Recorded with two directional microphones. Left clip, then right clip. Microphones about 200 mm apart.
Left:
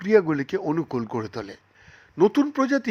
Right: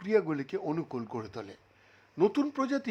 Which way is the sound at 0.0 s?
20° left (ahead or behind).